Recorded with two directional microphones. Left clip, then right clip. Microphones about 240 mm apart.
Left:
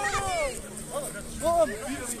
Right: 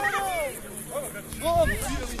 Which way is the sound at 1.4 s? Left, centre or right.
Left.